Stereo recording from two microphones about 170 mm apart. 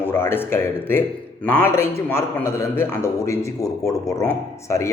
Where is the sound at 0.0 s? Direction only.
15° left (ahead or behind).